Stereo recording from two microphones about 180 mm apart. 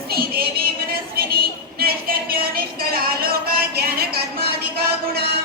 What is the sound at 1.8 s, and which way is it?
Music, 55° right (ahead or behind).